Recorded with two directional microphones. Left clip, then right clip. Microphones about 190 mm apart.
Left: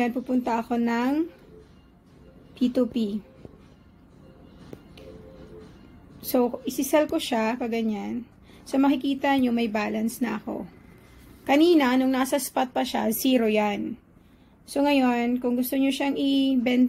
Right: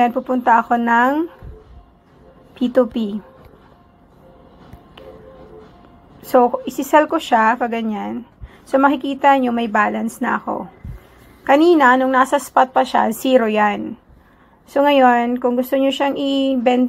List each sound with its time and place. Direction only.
0.0 s speech: centre (ahead or behind)
2.5 s speech: centre (ahead or behind)
4.9 s music: centre (ahead or behind)
6.2 s a woman's voice: centre (ahead or behind)
12.0 s a woman's voice: 15° left (ahead or behind)
12.6 s speech: centre (ahead or behind)